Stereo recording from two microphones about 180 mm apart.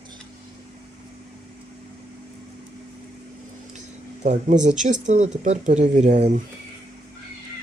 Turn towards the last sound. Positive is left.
turn(degrees=-40)  # may be behind; listen again after turning